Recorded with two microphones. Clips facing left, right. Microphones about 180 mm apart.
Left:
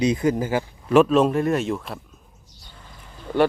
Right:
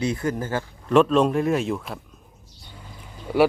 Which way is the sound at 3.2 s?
10° right (ahead or behind).